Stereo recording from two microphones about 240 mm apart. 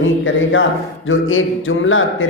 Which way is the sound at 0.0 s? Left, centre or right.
Left.